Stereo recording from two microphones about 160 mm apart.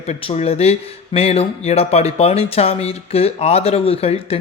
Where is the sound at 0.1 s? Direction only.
40° left (ahead or behind).